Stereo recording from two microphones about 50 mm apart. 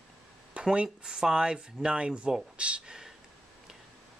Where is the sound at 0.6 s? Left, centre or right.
Centre.